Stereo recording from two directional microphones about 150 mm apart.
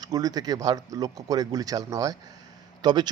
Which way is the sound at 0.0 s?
25° right (ahead or behind).